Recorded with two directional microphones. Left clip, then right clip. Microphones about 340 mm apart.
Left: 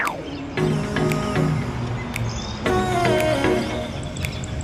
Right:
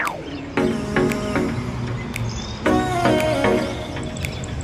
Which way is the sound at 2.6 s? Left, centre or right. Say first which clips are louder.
Right 2 dB; centre.